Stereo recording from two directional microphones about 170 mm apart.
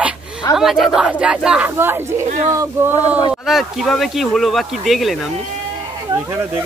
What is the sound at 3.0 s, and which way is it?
Speech, 20° left (ahead or behind).